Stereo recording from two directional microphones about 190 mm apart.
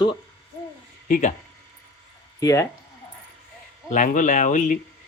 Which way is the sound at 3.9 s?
45° left (ahead or behind).